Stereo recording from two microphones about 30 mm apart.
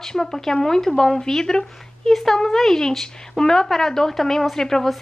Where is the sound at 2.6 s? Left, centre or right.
Centre.